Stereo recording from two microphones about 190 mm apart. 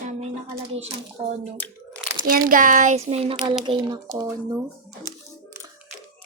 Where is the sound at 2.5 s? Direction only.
45° right (ahead or behind); by 4.3 s 20° right (ahead or behind).